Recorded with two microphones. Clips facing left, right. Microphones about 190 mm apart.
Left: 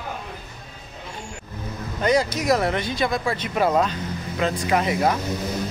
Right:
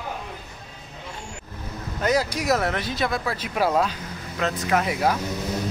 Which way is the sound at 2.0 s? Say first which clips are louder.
Left 2 dB; 5° right (ahead or behind).